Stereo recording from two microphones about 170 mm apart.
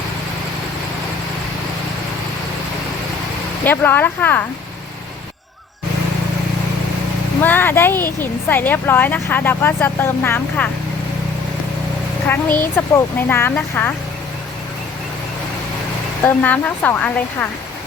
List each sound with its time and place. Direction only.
3.6 s speech: 10° left (ahead or behind)
7.4 s speech: 10° left (ahead or behind)
12.3 s speech: 10° left (ahead or behind)
16.2 s speech: 10° left (ahead or behind)